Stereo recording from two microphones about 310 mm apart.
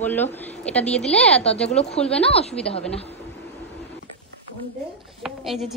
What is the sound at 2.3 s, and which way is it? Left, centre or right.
Speech, centre.